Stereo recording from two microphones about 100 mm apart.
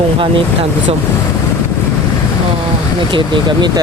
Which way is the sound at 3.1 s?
50° right (ahead or behind).